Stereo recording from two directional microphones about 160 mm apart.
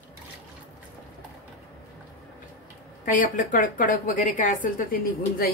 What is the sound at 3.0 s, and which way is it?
A woman's voice, 55° left (ahead or behind).